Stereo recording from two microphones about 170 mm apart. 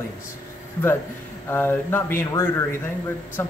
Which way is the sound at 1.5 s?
10° left (ahead or behind).